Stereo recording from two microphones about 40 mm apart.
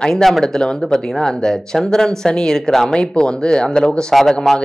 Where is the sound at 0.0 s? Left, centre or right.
Centre.